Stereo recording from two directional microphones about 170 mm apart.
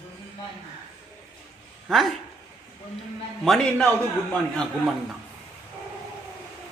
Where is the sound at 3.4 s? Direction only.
5° left (ahead or behind).